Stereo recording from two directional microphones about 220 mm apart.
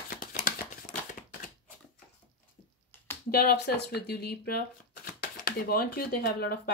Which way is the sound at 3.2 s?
45° left (ahead or behind).